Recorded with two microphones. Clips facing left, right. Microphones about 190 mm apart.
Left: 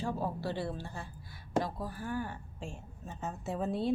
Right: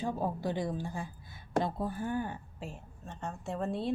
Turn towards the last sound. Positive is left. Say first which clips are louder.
# left 1 dB
turn(degrees=0)  # may be behind; listen again after turning